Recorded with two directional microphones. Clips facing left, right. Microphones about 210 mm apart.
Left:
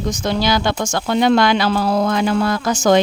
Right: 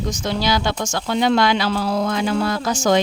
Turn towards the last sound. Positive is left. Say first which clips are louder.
# left 3 dB
turn(degrees=55)  # may be behind; listen again after turning